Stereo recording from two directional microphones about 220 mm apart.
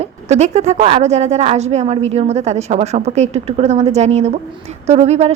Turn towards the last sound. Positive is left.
turn(degrees=-30)  # may be behind; listen again after turning